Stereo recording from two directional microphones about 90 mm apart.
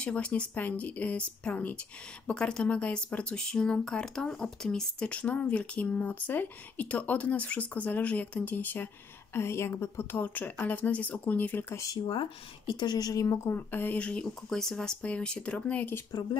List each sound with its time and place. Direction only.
0.0 s a woman's voice: 15° left (ahead or behind)
11.7 s speech: 40° left (ahead or behind)
12.1 s a woman's voice: 60° left (ahead or behind); by 16.0 s 15° left (ahead or behind)